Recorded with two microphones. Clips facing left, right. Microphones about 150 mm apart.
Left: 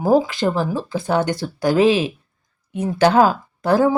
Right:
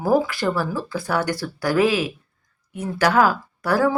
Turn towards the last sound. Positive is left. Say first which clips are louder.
# left 4 dB
turn(degrees=20)  # may be behind; listen again after turning